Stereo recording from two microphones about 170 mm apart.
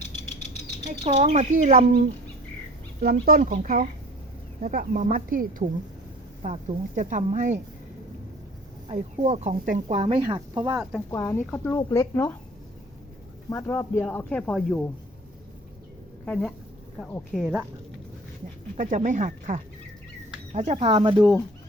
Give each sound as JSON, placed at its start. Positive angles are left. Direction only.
{"t": 0.9, "sound": "speech", "side_deg": -45}
{"t": 3.0, "sound": "speech", "side_deg": -60}
{"t": 8.9, "sound": "speech", "side_deg": -40}
{"t": 11.1, "sound": "speech", "side_deg": 15}
{"t": 13.5, "sound": "speech", "side_deg": 10}
{"t": 16.2, "sound": "speech", "side_deg": 5}
{"t": 17.4, "sound": "speech", "side_deg": -10}
{"t": 18.8, "sound": "speech", "side_deg": -45}